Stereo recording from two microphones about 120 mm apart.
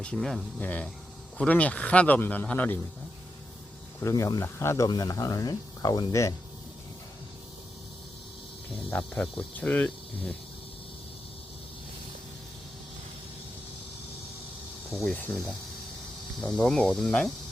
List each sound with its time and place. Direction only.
0.0 s speech: 5° left (ahead or behind)
4.0 s speech: 30° left (ahead or behind)
8.9 s speech: 10° left (ahead or behind)
15.0 s speech: 5° left (ahead or behind)
16.4 s speech: 5° left (ahead or behind)